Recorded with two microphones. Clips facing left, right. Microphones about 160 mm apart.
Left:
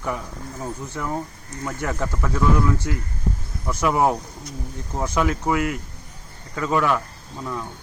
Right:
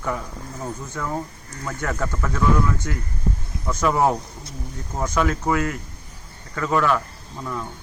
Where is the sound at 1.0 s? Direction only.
20° left (ahead or behind).